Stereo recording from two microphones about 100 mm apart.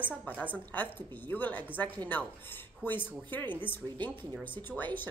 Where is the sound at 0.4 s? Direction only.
15° left (ahead or behind).